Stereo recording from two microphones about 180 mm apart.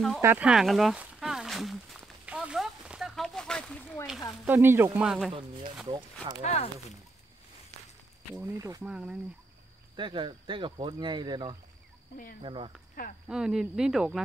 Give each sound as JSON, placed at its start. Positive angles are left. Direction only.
{"t": 0.2, "sound": "a sound", "side_deg": -10}
{"t": 4.5, "sound": "speech", "side_deg": -10}
{"t": 6.4, "sound": "speech", "side_deg": 35}
{"t": 8.4, "sound": "speech", "side_deg": -20}
{"t": 8.8, "sound": "speech", "side_deg": -5}
{"t": 9.9, "sound": "speech", "side_deg": -25}
{"t": 13.0, "sound": "speech", "side_deg": 50}
{"t": 13.3, "sound": "speech", "side_deg": -5}